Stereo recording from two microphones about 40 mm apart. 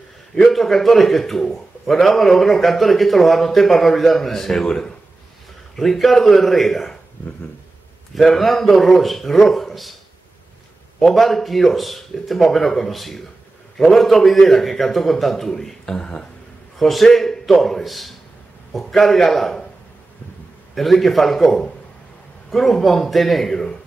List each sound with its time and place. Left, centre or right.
0.5 s a man's voice: centre
8.1 s a man's voice: centre
11.0 s a man's voice: centre
15.8 s speech: centre
16.7 s a man's voice: centre
20.7 s a man's voice: centre